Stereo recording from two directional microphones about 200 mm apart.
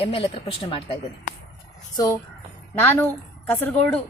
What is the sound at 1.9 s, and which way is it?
A woman's voice, 15° left (ahead or behind).